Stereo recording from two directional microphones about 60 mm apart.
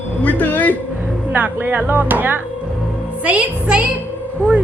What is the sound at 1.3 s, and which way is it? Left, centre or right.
Speech, right.